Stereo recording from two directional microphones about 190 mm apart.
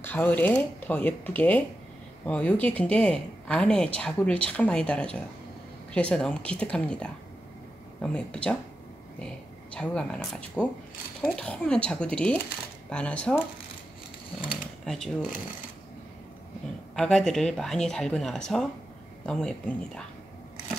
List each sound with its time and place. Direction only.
0.0 s a woman's voice: 10° left (ahead or behind)
14.9 s speech: centre (ahead or behind)
16.9 s speech: 5° left (ahead or behind)